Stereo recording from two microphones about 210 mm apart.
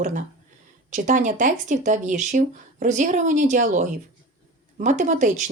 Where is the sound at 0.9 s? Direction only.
35° right (ahead or behind).